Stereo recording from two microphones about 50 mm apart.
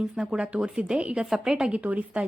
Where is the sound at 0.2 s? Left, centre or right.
Centre.